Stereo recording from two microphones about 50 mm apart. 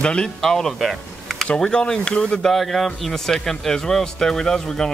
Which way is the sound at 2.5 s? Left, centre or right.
Centre.